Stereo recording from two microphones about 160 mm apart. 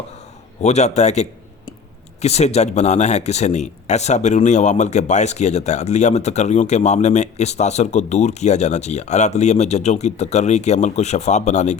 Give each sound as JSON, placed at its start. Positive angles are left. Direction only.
{"t": 0.6, "sound": "speech", "side_deg": 45}